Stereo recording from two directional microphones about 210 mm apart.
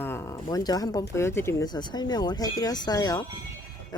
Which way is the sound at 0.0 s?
10° left (ahead or behind).